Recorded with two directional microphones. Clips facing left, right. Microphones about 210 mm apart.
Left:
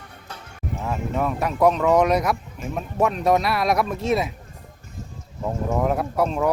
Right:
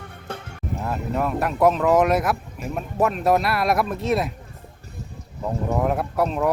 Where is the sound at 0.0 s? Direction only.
55° right (ahead or behind).